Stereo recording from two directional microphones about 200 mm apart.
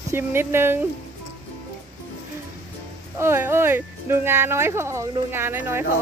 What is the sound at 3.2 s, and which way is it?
Speech, 10° right (ahead or behind).